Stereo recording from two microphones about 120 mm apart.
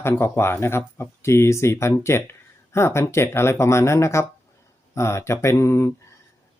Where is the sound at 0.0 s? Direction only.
20° left (ahead or behind).